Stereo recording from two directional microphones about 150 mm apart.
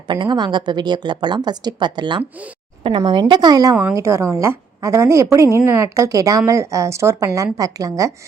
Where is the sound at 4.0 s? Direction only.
20° right (ahead or behind).